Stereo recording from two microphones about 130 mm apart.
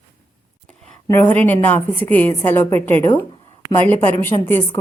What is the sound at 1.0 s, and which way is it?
A woman's voice, 15° left (ahead or behind).